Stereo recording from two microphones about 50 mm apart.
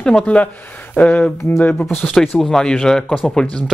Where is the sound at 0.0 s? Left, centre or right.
Centre.